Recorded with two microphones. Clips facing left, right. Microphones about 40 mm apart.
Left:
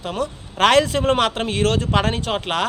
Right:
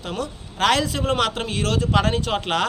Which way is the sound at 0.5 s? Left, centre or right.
Left.